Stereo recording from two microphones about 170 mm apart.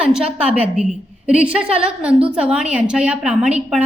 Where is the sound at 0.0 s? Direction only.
5° right (ahead or behind).